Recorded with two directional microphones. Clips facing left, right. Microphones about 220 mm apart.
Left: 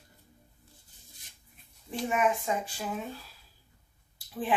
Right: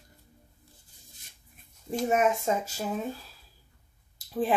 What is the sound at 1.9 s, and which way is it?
Speech, 40° right (ahead or behind).